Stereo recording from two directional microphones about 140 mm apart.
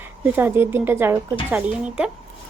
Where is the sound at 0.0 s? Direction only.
15° right (ahead or behind).